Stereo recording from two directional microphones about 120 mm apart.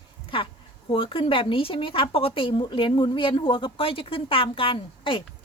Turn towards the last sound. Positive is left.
turn(degrees=45)  # may be behind; listen again after turning